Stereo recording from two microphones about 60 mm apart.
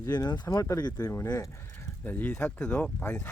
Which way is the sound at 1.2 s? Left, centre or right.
Left.